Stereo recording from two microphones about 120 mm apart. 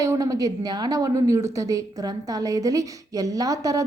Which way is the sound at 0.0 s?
25° right (ahead or behind).